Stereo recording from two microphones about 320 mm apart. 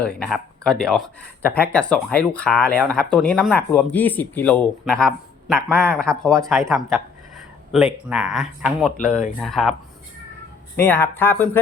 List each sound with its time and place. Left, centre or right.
0.0 s speech: centre
9.0 s speech: left
9.4 s speech: centre
10.8 s speech: centre